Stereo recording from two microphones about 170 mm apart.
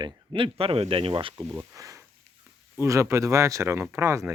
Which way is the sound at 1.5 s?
20° right (ahead or behind).